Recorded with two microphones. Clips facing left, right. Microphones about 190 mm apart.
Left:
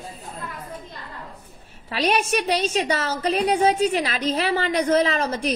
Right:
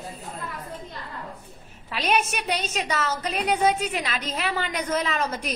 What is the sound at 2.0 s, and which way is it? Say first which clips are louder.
A woman's voice: left 4 dB; 35° left (ahead or behind).